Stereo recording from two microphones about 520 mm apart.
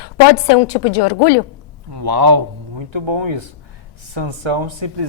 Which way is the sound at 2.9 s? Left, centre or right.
Right.